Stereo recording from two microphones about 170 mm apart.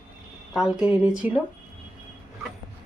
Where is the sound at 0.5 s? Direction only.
5° right (ahead or behind).